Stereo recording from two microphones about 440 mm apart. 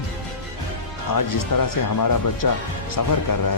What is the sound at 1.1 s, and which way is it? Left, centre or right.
Speech, left.